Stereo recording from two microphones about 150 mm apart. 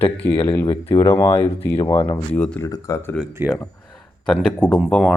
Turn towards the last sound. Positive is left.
turn(degrees=5)  # may be behind; listen again after turning